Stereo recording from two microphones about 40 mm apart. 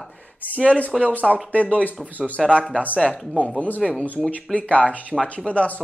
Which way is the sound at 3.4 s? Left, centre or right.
Left.